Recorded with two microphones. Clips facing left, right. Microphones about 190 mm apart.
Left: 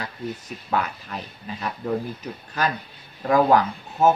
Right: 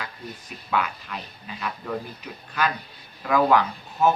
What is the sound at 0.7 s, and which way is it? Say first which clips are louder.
Speech: left 1 dB; 40° left (ahead or behind).